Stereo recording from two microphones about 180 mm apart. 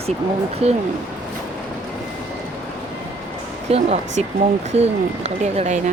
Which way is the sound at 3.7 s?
35° right (ahead or behind).